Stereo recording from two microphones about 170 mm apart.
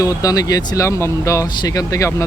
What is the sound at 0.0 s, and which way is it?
Speech, 20° left (ahead or behind).